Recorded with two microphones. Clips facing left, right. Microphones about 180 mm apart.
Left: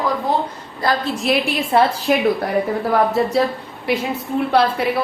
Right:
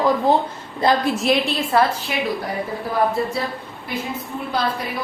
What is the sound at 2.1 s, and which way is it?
Speech, 45° left (ahead or behind).